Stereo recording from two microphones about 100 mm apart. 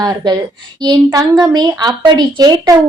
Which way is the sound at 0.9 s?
40° right (ahead or behind).